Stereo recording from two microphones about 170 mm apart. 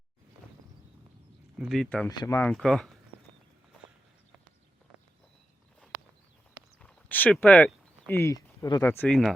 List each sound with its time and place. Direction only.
1.5 s speech: 5° right (ahead or behind)
2.0 s speech: 20° left (ahead or behind)
2.5 s speech: 5° left (ahead or behind)
6.7 s a sound: 10° left (ahead or behind)
8.8 s speech: 10° left (ahead or behind)